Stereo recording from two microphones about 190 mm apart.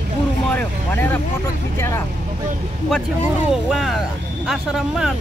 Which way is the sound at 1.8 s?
15° left (ahead or behind).